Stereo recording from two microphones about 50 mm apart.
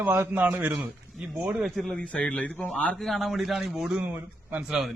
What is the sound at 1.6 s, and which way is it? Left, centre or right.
Speech, centre.